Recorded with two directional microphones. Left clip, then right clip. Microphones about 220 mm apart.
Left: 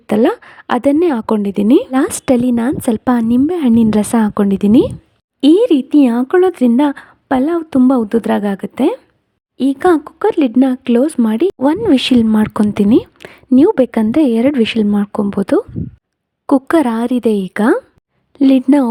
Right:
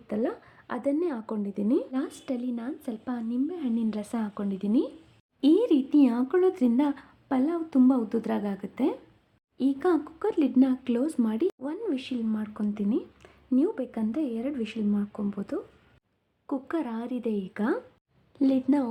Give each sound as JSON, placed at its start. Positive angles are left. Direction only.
{"t": 0.1, "sound": "a woman's voice", "side_deg": 50}